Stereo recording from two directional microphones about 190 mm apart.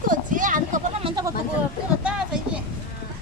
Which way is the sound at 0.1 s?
45° right (ahead or behind).